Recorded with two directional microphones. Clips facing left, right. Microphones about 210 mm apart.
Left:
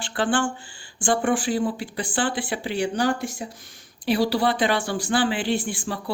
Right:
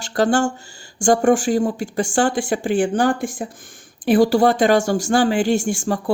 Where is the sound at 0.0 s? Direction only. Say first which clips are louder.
Right 6 dB; 40° right (ahead or behind).